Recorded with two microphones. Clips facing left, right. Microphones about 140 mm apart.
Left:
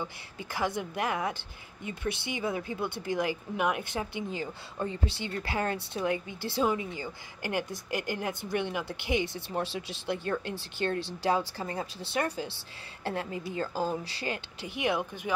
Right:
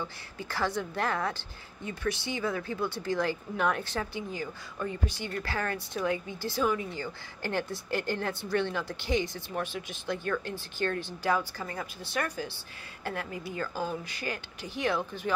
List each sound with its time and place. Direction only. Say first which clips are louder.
0.0 s a woman's voice: even; 20° left (ahead or behind)